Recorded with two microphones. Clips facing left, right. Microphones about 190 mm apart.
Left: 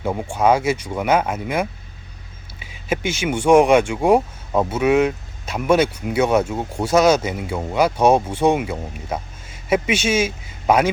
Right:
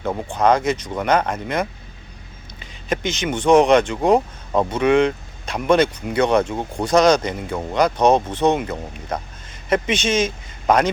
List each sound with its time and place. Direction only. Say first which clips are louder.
0.0 s speech: even; 10° left (ahead or behind)